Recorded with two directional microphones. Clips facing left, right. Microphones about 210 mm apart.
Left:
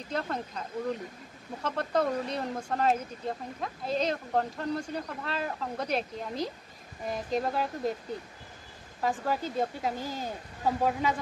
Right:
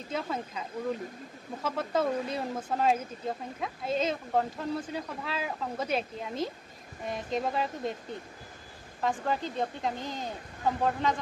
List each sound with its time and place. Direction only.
0.1 s speech: 5° right (ahead or behind)